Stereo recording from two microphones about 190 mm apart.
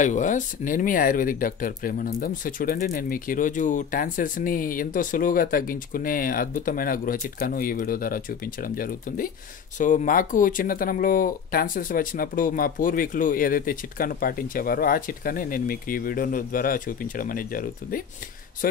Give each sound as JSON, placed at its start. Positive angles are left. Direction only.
{"t": 0.0, "sound": "speech", "side_deg": 40}